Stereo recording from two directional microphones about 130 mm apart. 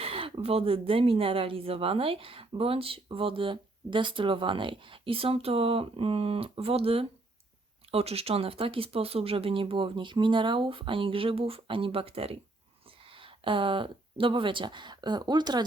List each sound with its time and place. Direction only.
0.0 s speech: 45° right (ahead or behind)